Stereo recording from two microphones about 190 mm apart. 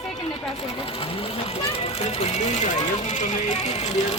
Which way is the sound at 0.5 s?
30° left (ahead or behind).